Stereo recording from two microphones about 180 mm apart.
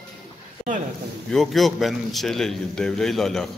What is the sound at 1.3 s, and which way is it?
A man's voice, centre (ahead or behind).